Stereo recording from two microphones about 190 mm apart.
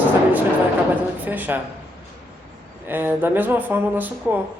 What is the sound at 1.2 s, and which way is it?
Speech, 10° right (ahead or behind).